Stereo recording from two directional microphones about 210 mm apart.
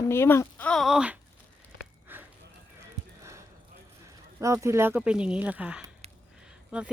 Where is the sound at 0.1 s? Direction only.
10° left (ahead or behind); by 1.2 s 5° right (ahead or behind).